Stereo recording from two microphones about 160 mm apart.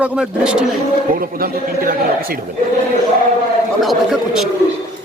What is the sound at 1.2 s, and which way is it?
A man's voice, 70° right (ahead or behind).